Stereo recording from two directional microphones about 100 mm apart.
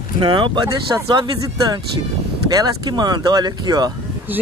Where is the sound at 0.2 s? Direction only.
50° right (ahead or behind).